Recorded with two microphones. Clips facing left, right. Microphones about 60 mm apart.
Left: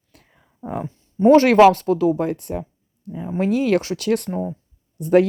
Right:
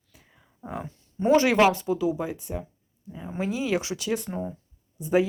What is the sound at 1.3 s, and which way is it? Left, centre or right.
Speech, left.